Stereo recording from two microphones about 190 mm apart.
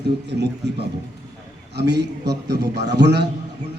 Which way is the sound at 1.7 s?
60° right (ahead or behind).